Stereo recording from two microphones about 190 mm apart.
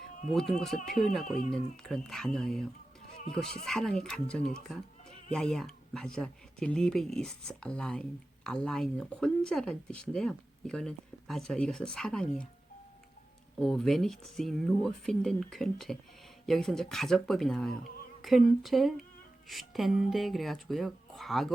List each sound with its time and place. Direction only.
0.3 s speech: centre (ahead or behind)
1.4 s speech: 30° left (ahead or behind)
1.7 s speech: centre (ahead or behind)
13.6 s speech: centre (ahead or behind)